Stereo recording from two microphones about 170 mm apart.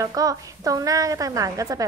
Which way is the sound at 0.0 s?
20° right (ahead or behind).